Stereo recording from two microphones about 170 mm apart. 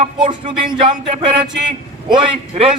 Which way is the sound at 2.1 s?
30° right (ahead or behind).